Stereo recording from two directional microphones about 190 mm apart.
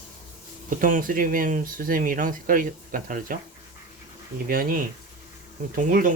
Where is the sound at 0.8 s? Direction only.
45° right (ahead or behind).